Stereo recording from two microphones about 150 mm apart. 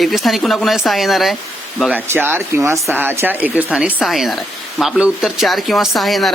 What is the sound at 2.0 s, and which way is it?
A woman's voice, 15° right (ahead or behind).